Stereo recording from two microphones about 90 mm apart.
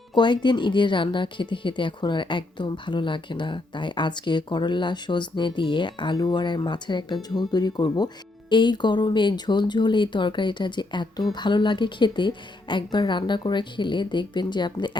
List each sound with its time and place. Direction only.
0.1 s a woman's voice: 60° left (ahead or behind)